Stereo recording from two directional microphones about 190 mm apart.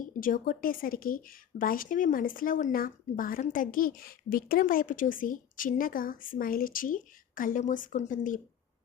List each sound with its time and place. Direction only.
0.0 s speech: 45° left (ahead or behind)